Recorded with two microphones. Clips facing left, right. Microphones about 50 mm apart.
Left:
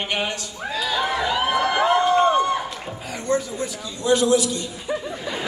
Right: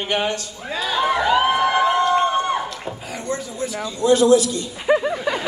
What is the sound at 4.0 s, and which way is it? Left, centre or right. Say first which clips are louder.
Speech: right 4 dB; right.